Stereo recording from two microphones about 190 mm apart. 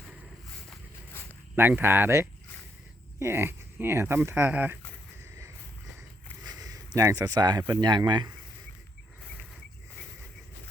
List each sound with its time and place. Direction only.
1.5 s speech: 10° right (ahead or behind)
6.4 s a sound: 20° right (ahead or behind)
7.7 s speech: 25° right (ahead or behind)